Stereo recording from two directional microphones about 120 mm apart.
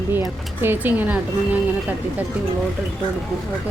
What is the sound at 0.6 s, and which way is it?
Speech, 15° right (ahead or behind).